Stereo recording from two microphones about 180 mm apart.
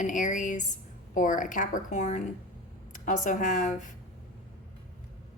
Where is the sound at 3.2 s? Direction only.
45° left (ahead or behind).